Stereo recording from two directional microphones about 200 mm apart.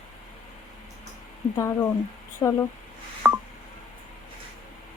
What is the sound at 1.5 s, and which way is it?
Speech, 15° left (ahead or behind).